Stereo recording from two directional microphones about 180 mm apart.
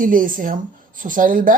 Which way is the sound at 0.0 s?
50° right (ahead or behind).